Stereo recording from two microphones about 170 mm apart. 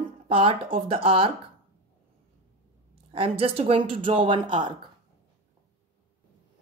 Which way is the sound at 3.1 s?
35° right (ahead or behind).